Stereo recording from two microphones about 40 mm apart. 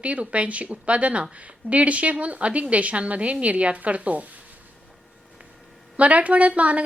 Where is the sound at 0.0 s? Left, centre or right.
Right.